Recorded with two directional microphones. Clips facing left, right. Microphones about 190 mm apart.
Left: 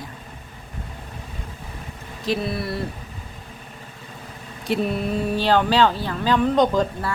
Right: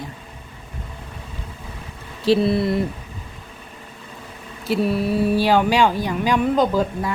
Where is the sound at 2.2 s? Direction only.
30° right (ahead or behind).